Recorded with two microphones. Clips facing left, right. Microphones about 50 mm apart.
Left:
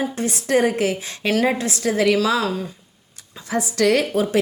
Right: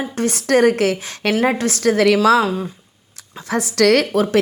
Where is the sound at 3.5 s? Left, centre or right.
Right.